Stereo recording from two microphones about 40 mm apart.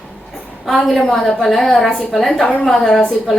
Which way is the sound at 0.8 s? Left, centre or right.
Centre.